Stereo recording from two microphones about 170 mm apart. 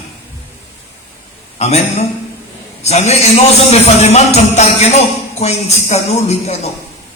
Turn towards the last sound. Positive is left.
turn(degrees=40)  # may be behind; listen again after turning